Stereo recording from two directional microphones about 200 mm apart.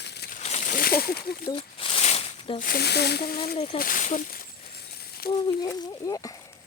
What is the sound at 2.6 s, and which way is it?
Speech, 50° left (ahead or behind).